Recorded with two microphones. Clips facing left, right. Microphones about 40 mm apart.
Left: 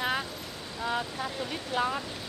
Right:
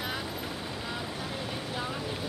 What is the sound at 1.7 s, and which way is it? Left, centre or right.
Speech, left.